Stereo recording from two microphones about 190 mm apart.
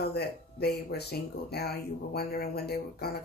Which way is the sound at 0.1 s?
55° left (ahead or behind).